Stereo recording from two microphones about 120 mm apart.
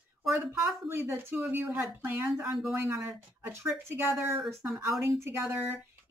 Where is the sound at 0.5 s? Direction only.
15° right (ahead or behind).